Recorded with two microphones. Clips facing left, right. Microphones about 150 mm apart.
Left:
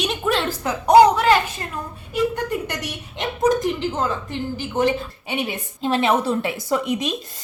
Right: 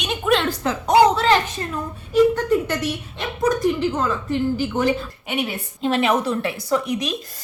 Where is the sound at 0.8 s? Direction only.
15° left (ahead or behind).